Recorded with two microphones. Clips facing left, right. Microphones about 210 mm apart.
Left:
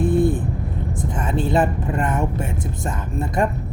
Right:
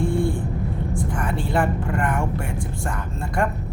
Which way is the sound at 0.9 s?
20° left (ahead or behind).